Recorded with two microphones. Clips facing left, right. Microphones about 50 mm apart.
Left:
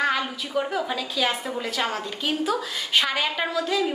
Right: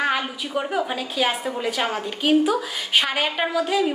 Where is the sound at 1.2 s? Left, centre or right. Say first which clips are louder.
Right 2 dB; right.